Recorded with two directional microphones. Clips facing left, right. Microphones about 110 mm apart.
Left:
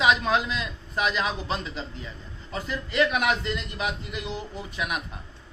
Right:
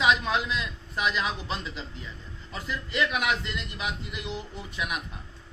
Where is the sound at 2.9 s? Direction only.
30° left (ahead or behind).